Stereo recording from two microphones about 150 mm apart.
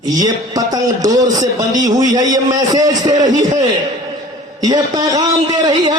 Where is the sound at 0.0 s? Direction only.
25° right (ahead or behind).